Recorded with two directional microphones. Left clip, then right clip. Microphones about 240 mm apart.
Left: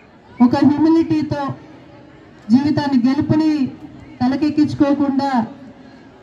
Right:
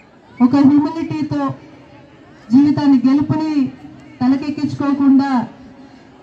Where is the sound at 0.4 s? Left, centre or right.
Left.